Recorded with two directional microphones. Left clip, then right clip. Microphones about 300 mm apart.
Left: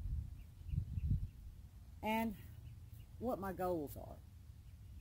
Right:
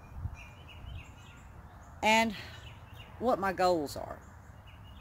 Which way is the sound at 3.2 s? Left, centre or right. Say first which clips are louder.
Right 12 dB; centre.